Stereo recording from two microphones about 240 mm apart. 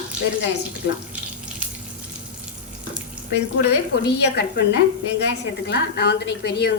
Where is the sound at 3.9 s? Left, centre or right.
Left.